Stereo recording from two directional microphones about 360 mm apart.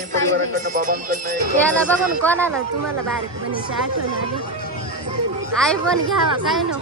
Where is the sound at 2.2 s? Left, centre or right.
Centre.